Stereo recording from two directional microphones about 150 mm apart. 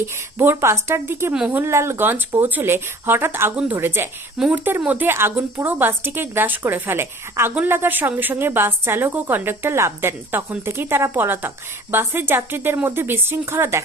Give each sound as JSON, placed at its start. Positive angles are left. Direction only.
{"t": 0.3, "sound": "a woman's voice", "side_deg": -15}